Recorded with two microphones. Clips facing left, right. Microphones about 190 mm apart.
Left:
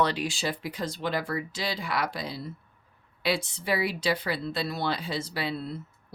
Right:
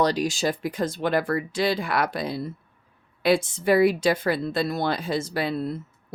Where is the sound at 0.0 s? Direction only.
40° right (ahead or behind).